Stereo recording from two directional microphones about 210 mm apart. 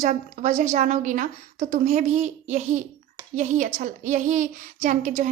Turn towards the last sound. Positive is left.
turn(degrees=-35)  # may be behind; listen again after turning